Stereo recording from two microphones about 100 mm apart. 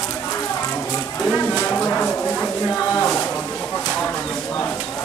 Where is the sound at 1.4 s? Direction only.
20° left (ahead or behind).